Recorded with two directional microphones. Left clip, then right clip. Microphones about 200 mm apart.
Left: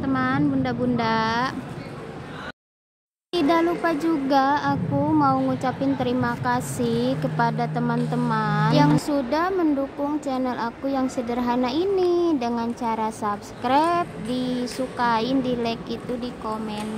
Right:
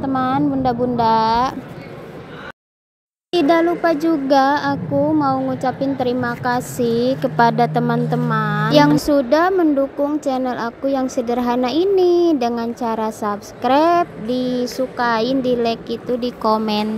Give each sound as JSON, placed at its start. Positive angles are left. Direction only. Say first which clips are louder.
{"t": 0.2, "sound": "speech", "louder": "right 7 dB", "side_deg": -20}
{"t": 3.3, "sound": "a woman's voice", "louder": "right 6 dB", "side_deg": -20}
{"t": 8.7, "sound": "a woman's voice", "louder": "right 10 dB", "side_deg": -30}
{"t": 16.2, "sound": "speech", "louder": "right 11 dB", "side_deg": -40}